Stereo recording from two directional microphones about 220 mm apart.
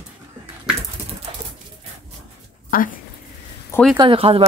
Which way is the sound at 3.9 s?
25° right (ahead or behind).